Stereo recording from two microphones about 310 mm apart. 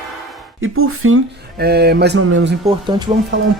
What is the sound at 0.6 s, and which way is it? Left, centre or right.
Speech, right.